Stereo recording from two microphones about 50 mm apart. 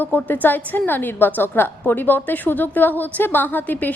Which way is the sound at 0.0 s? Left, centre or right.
Left.